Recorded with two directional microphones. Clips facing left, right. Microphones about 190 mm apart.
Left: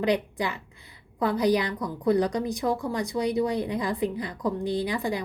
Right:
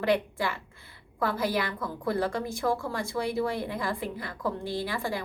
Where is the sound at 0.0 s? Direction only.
20° left (ahead or behind).